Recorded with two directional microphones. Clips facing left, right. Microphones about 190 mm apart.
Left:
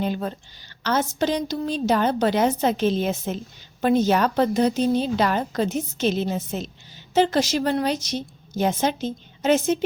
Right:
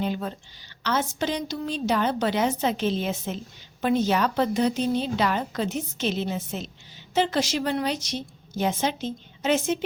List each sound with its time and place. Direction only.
0.0 s a woman's voice: 45° left (ahead or behind)